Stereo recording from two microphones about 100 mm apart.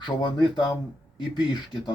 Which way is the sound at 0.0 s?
50° left (ahead or behind).